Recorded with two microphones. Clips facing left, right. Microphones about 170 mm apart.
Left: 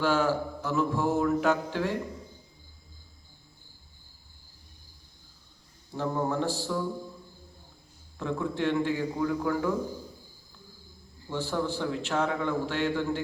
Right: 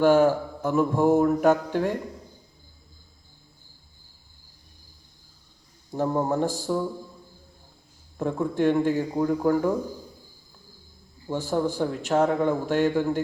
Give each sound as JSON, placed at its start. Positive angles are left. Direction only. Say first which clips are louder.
{"t": 0.0, "sound": "mantra", "louder": "right 7 dB", "side_deg": -50}
{"t": 5.9, "sound": "mantra", "louder": "right 5 dB", "side_deg": -40}
{"t": 8.2, "sound": "mantra", "louder": "right 6 dB", "side_deg": -45}
{"t": 11.3, "sound": "mantra", "louder": "right 5 dB", "side_deg": -45}